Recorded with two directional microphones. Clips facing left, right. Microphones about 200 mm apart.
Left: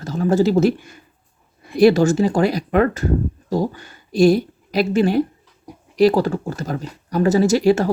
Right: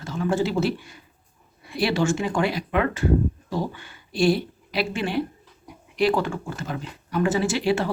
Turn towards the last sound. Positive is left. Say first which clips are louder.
# left 8 dB
turn(degrees=40)  # may be behind; listen again after turning